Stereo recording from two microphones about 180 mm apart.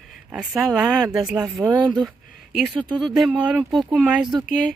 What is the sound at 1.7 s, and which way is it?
Speech, 25° right (ahead or behind).